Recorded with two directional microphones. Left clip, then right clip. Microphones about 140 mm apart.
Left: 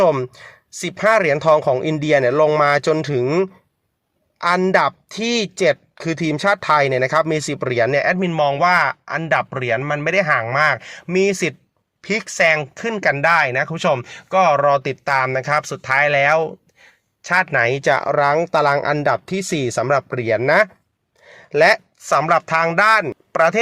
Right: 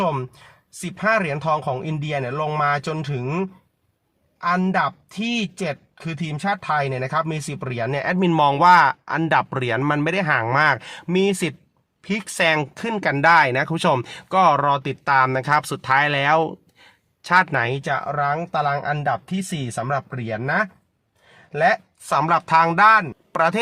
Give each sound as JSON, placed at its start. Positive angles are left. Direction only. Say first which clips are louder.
{"t": 0.0, "sound": "speech", "louder": "left 8 dB", "side_deg": 15}
{"t": 0.9, "sound": "speech", "louder": "left 5 dB", "side_deg": 30}
{"t": 4.4, "sound": "a man's voice", "louder": "left 5 dB", "side_deg": 35}
{"t": 8.2, "sound": "a man's voice", "louder": "right 1 dB", "side_deg": -10}
{"t": 11.1, "sound": "a man's voice", "louder": "left 3 dB", "side_deg": 0}
{"t": 17.7, "sound": "speech", "louder": "left 7 dB", "side_deg": 30}
{"t": 22.2, "sound": "speech", "louder": "right 1 dB", "side_deg": 5}